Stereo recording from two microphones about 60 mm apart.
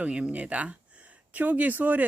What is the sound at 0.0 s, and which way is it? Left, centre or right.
Speech, right.